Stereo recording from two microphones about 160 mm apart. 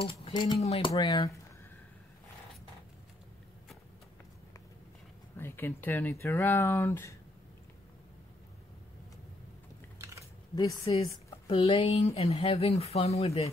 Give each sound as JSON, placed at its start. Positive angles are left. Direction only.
{"t": 0.0, "sound": "speech", "side_deg": 35}
{"t": 0.6, "sound": "speech", "side_deg": 40}
{"t": 5.4, "sound": "speech", "side_deg": 15}
{"t": 9.9, "sound": "a sound", "side_deg": -20}
{"t": 10.9, "sound": "speech", "side_deg": 30}